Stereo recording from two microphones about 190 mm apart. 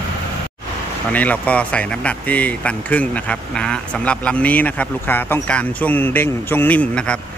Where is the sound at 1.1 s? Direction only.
10° left (ahead or behind).